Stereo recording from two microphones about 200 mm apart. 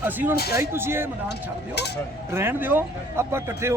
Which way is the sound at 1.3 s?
55° left (ahead or behind).